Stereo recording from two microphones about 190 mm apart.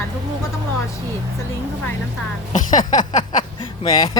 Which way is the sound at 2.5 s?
40° left (ahead or behind).